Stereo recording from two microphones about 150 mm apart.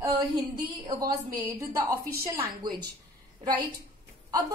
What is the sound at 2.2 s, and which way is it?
Speech, 15° right (ahead or behind).